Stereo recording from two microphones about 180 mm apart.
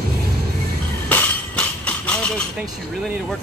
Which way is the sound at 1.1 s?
10° left (ahead or behind).